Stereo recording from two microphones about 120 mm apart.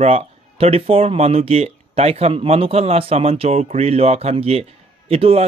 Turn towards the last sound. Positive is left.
turn(degrees=-55)  # may be behind; listen again after turning